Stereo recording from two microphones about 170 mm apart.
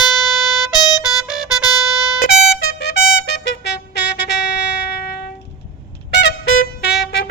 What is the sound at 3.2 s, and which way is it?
Music, 85° left.